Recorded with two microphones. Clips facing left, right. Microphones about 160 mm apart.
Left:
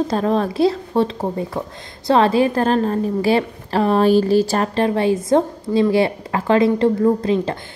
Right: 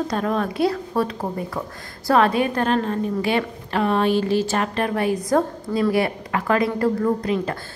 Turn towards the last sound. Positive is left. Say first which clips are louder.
# left 5 dB
turn(degrees=25)  # may be behind; listen again after turning